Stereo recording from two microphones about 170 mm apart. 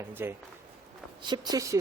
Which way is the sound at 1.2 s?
25° right (ahead or behind).